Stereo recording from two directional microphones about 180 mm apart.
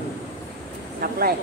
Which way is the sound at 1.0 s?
55° right (ahead or behind).